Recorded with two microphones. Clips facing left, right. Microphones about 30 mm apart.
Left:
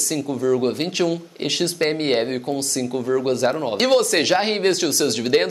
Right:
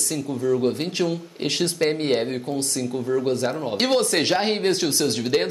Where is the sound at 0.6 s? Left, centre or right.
Left.